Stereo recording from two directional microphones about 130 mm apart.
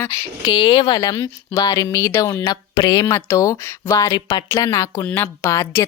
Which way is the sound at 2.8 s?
35° left (ahead or behind).